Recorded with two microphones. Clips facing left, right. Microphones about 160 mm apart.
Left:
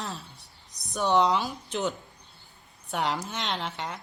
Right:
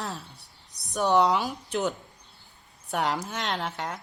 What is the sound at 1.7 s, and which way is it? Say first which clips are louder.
Speech: right 2 dB; centre (ahead or behind).